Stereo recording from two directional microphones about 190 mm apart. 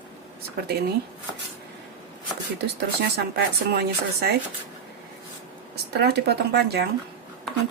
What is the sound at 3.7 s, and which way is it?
Speech, 55° right (ahead or behind).